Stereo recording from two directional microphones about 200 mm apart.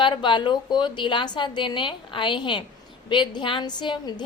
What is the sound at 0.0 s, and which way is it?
A woman's voice, 25° left (ahead or behind).